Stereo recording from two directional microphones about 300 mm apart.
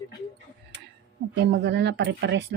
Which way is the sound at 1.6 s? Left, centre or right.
Right.